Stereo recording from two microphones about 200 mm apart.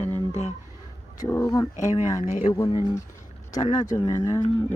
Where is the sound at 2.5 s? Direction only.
20° left (ahead or behind).